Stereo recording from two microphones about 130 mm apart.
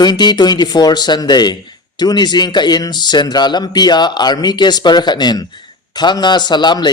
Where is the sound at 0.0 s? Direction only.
35° left (ahead or behind).